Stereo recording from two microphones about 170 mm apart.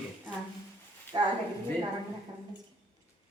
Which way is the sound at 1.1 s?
25° right (ahead or behind).